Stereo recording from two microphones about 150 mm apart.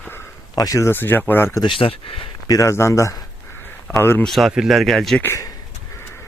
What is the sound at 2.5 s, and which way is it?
Speech, 20° left (ahead or behind).